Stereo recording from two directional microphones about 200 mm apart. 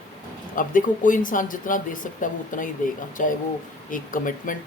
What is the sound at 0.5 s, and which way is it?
Speech, 40° left (ahead or behind).